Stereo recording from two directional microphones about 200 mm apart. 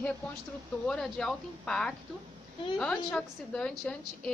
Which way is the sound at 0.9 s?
5° left (ahead or behind).